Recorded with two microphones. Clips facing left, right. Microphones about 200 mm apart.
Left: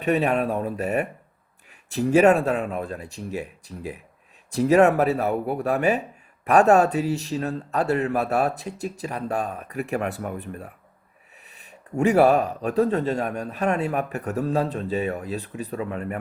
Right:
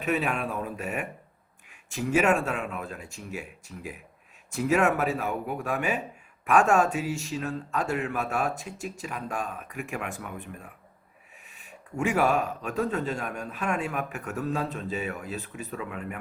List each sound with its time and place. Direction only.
0.0 s speech: 35° left (ahead or behind)